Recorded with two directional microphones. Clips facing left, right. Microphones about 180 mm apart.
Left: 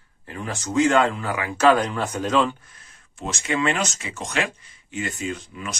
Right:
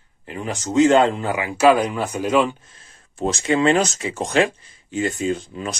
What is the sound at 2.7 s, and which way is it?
Speech, 30° right (ahead or behind).